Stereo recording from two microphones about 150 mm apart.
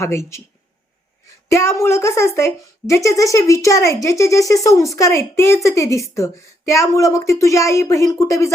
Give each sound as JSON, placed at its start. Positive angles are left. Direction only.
{"t": 0.0, "sound": "speech", "side_deg": 20}
{"t": 1.5, "sound": "a woman's voice", "side_deg": 20}